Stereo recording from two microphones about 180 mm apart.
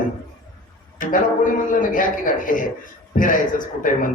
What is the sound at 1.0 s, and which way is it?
Music, 45° left (ahead or behind).